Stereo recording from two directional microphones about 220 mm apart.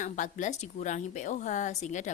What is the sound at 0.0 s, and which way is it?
Speech, 35° left (ahead or behind).